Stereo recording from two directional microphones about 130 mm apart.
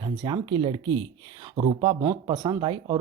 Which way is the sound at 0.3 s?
35° right (ahead or behind).